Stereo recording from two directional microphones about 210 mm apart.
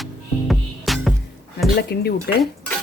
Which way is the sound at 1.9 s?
50° left (ahead or behind).